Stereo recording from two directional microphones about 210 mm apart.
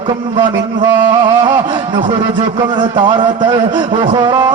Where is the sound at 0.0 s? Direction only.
20° right (ahead or behind).